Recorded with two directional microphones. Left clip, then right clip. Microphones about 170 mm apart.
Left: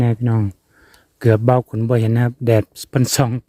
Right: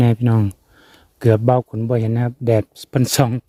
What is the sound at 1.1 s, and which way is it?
A man's voice, centre (ahead or behind).